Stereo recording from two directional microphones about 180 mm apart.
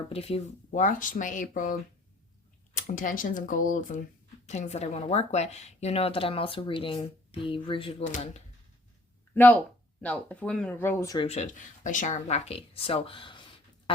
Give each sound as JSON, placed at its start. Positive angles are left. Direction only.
{"t": 0.1, "sound": "speech", "side_deg": 35}
{"t": 2.7, "sound": "speech", "side_deg": 45}
{"t": 9.3, "sound": "speech", "side_deg": 10}
{"t": 11.2, "sound": "speech", "side_deg": 35}